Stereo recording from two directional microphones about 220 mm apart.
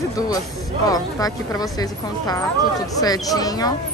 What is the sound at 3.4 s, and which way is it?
Speech, 15° left (ahead or behind).